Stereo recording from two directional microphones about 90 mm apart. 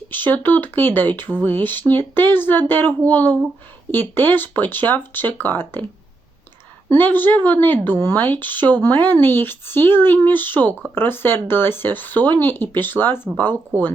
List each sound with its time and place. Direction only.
0.1 s speech: 20° left (ahead or behind)
7.0 s speech: 20° left (ahead or behind)